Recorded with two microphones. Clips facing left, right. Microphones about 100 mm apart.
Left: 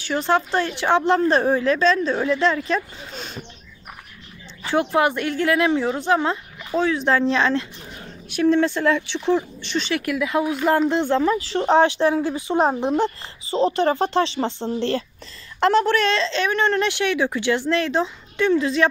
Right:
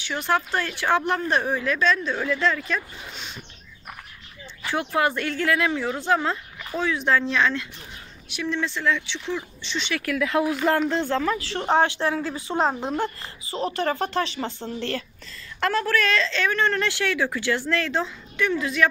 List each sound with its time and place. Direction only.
0.0 s speech: 35° left (ahead or behind)
3.2 s a sound: 40° left (ahead or behind)
4.6 s speech: 25° left (ahead or behind)
8.3 s speech: 45° left (ahead or behind)
9.9 s speech: 15° left (ahead or behind)
10.7 s speech: 20° left (ahead or behind)